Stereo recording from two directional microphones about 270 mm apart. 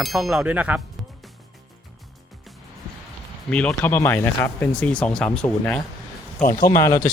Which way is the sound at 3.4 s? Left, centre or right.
Centre.